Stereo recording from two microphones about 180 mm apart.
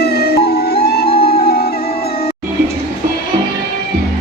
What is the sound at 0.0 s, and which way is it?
Music, 60° left (ahead or behind).